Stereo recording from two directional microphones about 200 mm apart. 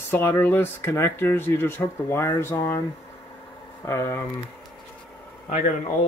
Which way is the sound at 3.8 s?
10° left (ahead or behind).